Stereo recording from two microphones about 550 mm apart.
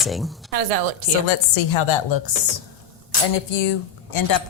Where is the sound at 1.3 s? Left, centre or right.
Left.